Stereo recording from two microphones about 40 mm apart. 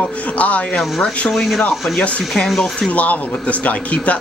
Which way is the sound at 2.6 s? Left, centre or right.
Left.